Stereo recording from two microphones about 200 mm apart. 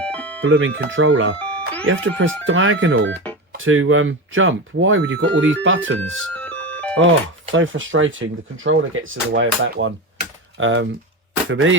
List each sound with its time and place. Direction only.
0.0 s music: 5° left (ahead or behind)
0.4 s speech: 60° right (ahead or behind)
3.6 s speech: 80° right
6.3 s music: 10° left (ahead or behind)
7.0 s speech: 75° right (ahead or behind)